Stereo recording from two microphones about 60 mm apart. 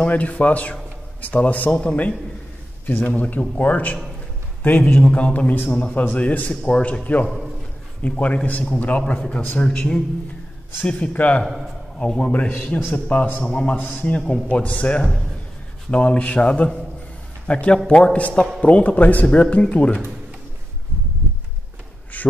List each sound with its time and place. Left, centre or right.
0.1 s a man's voice: left
5.0 s a man's voice: centre
6.5 s a man's voice: centre
10.8 s a man's voice: left
11.4 s a man's voice: centre
12.0 s a man's voice: centre
13.4 s a man's voice: centre
13.7 s a man's voice: left
14.1 s a man's voice: centre
22.1 s a sound: left